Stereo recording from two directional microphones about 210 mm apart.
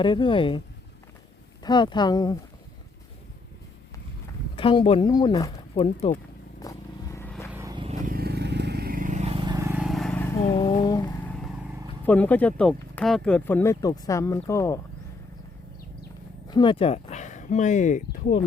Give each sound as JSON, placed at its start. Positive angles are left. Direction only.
{"t": 0.0, "sound": "speech", "side_deg": 20}
{"t": 1.6, "sound": "speech", "side_deg": 20}
{"t": 4.5, "sound": "speech", "side_deg": 25}
{"t": 6.6, "sound": "vehicle", "side_deg": 15}
{"t": 7.5, "sound": "vehicle", "side_deg": -15}
{"t": 8.0, "sound": "vehicle", "side_deg": -45}
{"t": 9.6, "sound": "vehicle", "side_deg": -10}
{"t": 10.4, "sound": "cat", "side_deg": 25}
{"t": 12.0, "sound": "speech", "side_deg": 5}
{"t": 16.5, "sound": "speech", "side_deg": 20}